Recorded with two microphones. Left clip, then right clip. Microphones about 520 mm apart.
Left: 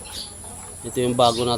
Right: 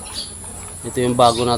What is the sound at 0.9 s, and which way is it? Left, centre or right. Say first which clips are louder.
Speech: right 4 dB; left.